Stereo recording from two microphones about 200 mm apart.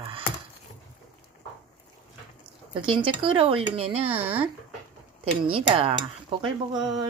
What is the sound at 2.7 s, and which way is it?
Speech, 25° right (ahead or behind).